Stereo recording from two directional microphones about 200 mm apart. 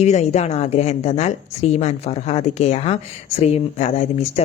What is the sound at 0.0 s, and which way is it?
Speech, 35° left (ahead or behind).